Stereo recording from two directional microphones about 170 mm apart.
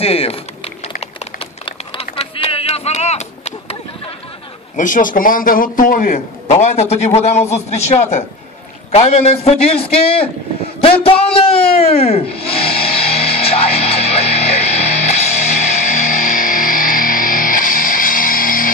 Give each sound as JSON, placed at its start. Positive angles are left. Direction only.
{"t": 0.0, "sound": "speech", "side_deg": 35}
{"t": 2.0, "sound": "a sound", "side_deg": 35}
{"t": 4.7, "sound": "a man's voice", "side_deg": 50}
{"t": 6.4, "sound": "a man's voice", "side_deg": 40}
{"t": 10.8, "sound": "a sound", "side_deg": 35}
{"t": 11.8, "sound": "music", "side_deg": 35}